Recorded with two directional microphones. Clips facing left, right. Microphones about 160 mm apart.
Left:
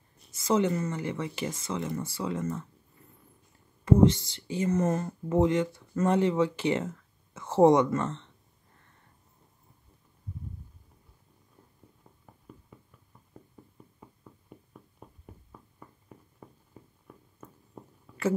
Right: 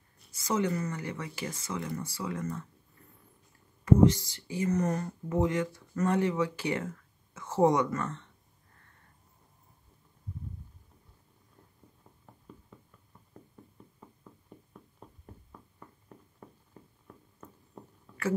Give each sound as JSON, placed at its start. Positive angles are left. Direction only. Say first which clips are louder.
{"t": 0.2, "sound": "speech", "louder": "left 4 dB", "side_deg": 25}
{"t": 3.8, "sound": "speech", "louder": "left 1 dB", "side_deg": 25}
{"t": 12.5, "sound": "a sound", "louder": "left 1 dB", "side_deg": 5}